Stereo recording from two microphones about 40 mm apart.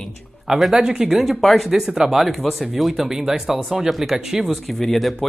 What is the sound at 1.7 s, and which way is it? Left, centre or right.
Speech, centre.